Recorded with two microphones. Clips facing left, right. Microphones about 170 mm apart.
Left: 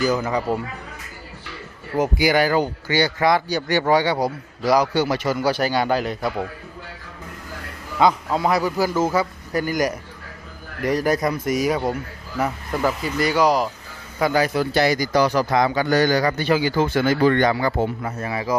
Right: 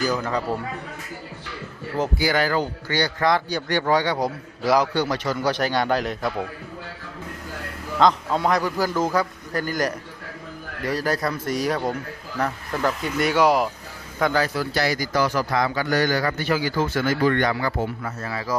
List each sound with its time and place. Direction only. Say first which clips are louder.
0.1 s a man's voice: left 3 dB; 10° left (ahead or behind)
2.0 s a man's voice: left 4 dB; 15° left (ahead or behind)
7.9 s a man's voice: left 1 dB; 5° left (ahead or behind)
14.2 s a man's voice: left 3 dB; 10° left (ahead or behind)